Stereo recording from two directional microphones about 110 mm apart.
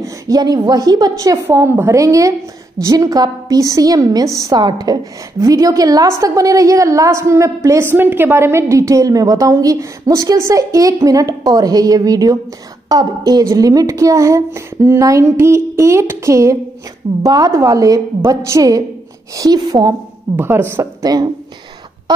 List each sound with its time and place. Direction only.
0.0 s a woman's voice: 35° right (ahead or behind)
20.3 s a woman's voice: 20° right (ahead or behind)
21.0 s speech: 35° right (ahead or behind)